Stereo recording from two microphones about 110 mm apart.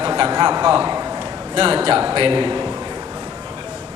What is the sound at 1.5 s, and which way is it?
A man's voice, 50° right (ahead or behind).